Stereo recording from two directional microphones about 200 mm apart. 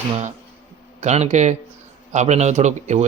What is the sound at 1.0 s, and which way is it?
A man's voice, 35° right (ahead or behind).